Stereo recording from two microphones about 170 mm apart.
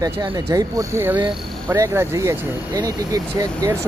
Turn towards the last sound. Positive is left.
turn(degrees=-20)  # may be behind; listen again after turning